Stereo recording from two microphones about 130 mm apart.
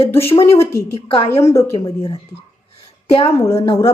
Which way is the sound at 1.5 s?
25° left (ahead or behind).